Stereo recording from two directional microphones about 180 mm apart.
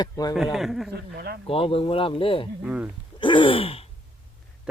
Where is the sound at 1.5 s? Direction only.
30° left (ahead or behind).